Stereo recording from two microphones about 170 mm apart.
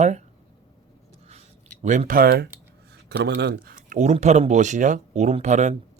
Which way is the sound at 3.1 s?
80° right.